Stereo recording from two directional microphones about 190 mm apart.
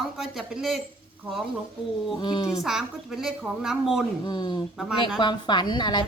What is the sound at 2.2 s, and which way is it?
Speech, 25° left (ahead or behind).